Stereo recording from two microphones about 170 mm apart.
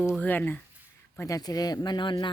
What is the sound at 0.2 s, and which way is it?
Speech, 10° left (ahead or behind).